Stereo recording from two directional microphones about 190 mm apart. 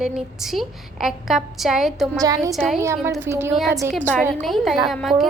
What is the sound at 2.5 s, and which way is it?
Speech, centre (ahead or behind).